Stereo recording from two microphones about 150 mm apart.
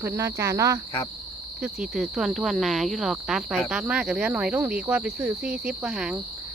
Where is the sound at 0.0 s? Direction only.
15° right (ahead or behind).